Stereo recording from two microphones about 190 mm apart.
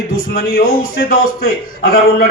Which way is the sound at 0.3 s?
50° left (ahead or behind).